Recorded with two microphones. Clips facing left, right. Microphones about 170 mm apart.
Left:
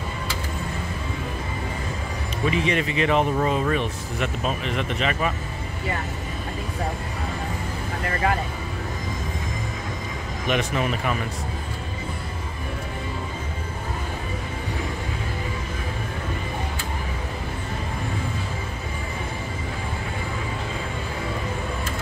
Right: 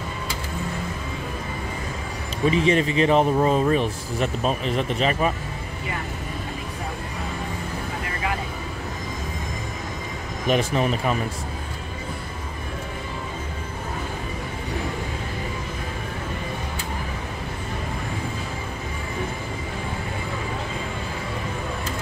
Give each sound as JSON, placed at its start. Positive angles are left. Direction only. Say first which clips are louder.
{"t": 2.5, "sound": "speech", "louder": "right 4 dB", "side_deg": -30}
{"t": 10.5, "sound": "speech", "louder": "right 3 dB", "side_deg": -35}